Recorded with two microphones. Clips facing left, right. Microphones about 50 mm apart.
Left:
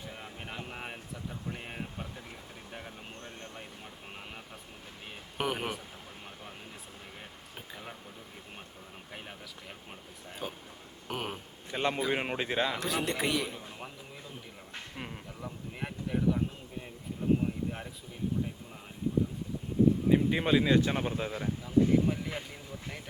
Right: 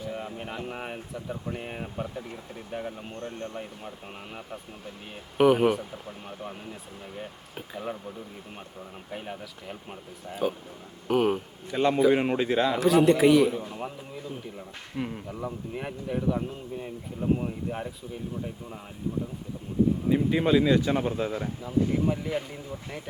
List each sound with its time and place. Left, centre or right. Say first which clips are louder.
0.1 s speech: right 8 dB; centre
3.2 s speech: right 9 dB; centre
5.4 s a man's voice: right 13 dB; centre
6.2 s speech: right 8 dB; centre
9.0 s a man's voice: right 9 dB; centre
11.7 s a man's voice: right 7 dB; left
11.9 s speech: right 9 dB; centre
12.7 s a man's voice: right 12 dB; centre
15.0 s speech: right 11 dB; centre
15.3 s speech: right 8 dB; right
15.7 s a man's voice: right 1 dB; centre
17.4 s speech: right 2 dB; centre
20.1 s a man's voice: right 4 dB; centre
21.2 s speech: right 4 dB; centre